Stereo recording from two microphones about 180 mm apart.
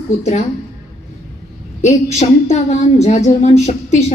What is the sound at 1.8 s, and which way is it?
A woman's voice, 40° left (ahead or behind).